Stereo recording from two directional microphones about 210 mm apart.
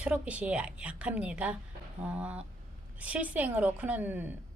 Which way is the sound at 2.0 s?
5° right (ahead or behind).